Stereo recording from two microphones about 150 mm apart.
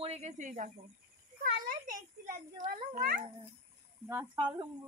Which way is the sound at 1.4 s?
90° right.